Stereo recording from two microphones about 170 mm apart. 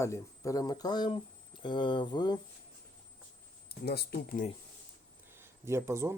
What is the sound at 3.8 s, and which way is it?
Speech, 65° left (ahead or behind).